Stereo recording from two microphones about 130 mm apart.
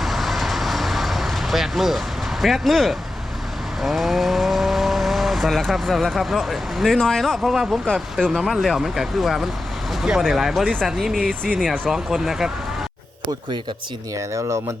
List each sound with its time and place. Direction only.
0.0 s vehicle: centre (ahead or behind)
2.4 s speech: centre (ahead or behind)
14.2 s speech: 25° right (ahead or behind)